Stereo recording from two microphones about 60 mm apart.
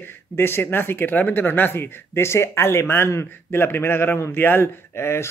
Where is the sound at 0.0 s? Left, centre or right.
Left.